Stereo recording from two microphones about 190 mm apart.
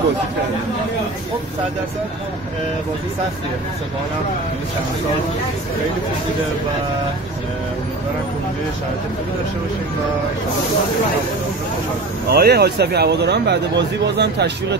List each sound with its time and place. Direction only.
12.3 s speech: 55° right (ahead or behind)